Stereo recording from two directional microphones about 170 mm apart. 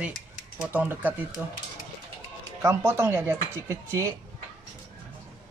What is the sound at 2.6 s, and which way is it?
Speech, 15° right (ahead or behind).